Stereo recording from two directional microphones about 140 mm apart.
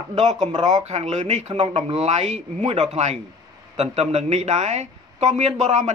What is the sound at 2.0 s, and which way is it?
Speech, 55° right (ahead or behind).